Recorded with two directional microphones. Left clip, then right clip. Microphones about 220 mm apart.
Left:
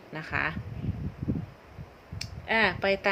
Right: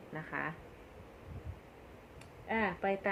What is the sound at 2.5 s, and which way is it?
Speech, 30° left (ahead or behind).